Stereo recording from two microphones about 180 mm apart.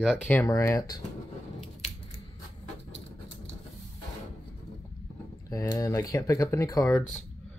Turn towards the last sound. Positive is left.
turn(degrees=5)  # may be behind; listen again after turning